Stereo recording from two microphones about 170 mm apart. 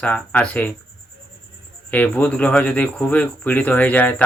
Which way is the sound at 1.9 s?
10° left (ahead or behind).